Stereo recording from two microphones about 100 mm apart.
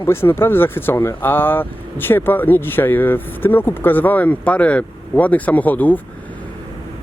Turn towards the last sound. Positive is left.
turn(degrees=15)  # may be behind; listen again after turning